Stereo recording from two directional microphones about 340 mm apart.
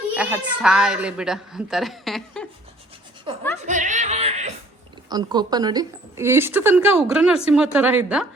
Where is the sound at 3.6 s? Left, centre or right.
Right.